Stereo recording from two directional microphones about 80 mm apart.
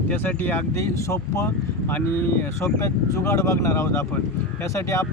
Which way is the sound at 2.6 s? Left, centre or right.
Left.